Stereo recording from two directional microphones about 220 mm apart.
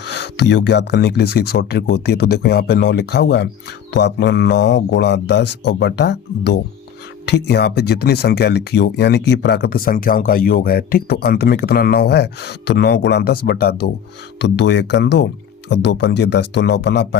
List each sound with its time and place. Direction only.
0.0 s speech: 50° left (ahead or behind)